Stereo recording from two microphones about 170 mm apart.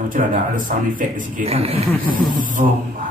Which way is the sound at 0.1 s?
50° right (ahead or behind).